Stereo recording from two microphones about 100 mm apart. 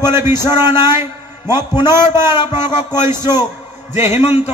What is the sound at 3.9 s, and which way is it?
Speech, 90° left.